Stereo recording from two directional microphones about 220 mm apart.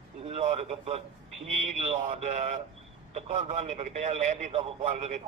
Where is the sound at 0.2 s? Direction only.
30° right (ahead or behind).